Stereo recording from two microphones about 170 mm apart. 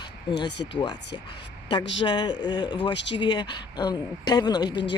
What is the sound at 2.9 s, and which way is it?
Speech, 90° left.